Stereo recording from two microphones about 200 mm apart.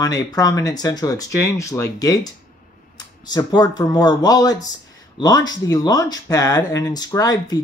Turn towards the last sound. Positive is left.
turn(degrees=20)  # may be behind; listen again after turning